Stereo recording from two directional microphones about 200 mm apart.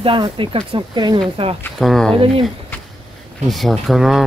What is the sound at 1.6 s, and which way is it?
Speech, centre (ahead or behind).